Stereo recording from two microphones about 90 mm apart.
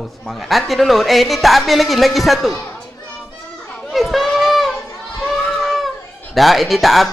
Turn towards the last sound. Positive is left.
turn(degrees=0)  # may be behind; listen again after turning